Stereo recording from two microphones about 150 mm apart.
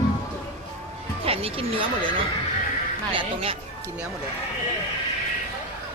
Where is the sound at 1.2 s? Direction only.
40° right (ahead or behind).